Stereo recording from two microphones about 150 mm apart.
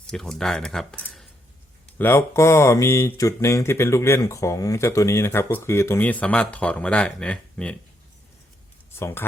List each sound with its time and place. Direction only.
0.1 s speech: 5° left (ahead or behind)
9.0 s speech: 15° left (ahead or behind)